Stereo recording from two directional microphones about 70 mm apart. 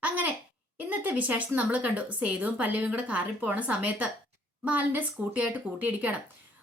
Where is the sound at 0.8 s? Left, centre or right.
Right.